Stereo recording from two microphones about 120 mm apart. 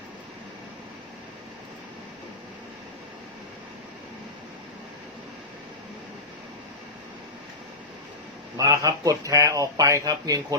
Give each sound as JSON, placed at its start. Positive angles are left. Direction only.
{"t": 8.5, "sound": "speech", "side_deg": -30}